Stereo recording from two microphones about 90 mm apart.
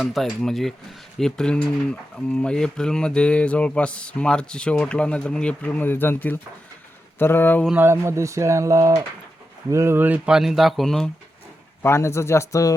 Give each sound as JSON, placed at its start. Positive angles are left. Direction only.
{"t": 0.0, "sound": "speech", "side_deg": 0}
{"t": 7.2, "sound": "mantra", "side_deg": 25}
{"t": 7.8, "sound": "speech", "side_deg": -30}
{"t": 10.2, "sound": "speech", "side_deg": -5}
{"t": 11.8, "sound": "speech", "side_deg": 30}